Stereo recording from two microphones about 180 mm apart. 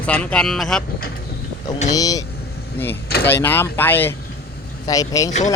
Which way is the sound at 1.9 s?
20° left (ahead or behind).